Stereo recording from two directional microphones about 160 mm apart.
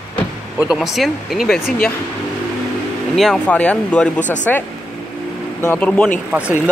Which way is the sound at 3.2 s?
5° left (ahead or behind).